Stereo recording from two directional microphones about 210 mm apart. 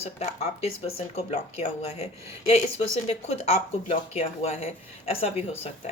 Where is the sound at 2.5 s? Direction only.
30° left (ahead or behind).